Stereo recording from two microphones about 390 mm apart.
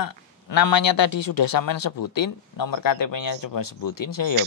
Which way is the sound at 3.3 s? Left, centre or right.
Left.